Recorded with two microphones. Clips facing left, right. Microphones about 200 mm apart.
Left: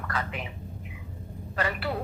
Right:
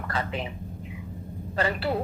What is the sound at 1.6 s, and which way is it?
Speech, 30° right (ahead or behind).